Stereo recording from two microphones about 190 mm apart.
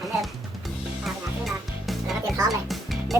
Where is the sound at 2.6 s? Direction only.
Centre (ahead or behind).